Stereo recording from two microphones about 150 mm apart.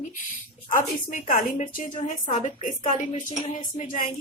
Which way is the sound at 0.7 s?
60° left (ahead or behind).